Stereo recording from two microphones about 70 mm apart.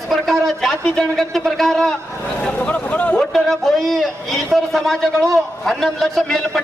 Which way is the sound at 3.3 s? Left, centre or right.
Centre.